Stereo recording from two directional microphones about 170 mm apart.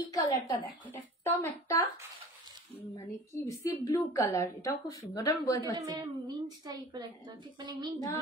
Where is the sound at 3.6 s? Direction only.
20° left (ahead or behind).